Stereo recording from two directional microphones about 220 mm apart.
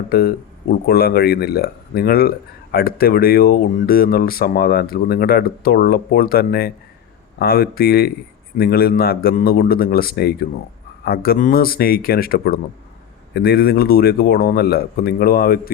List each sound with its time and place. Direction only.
0.1 s speech: 45° left (ahead or behind)